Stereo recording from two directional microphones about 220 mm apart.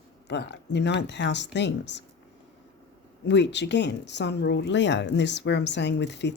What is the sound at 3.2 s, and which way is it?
Speech, 50° left (ahead or behind).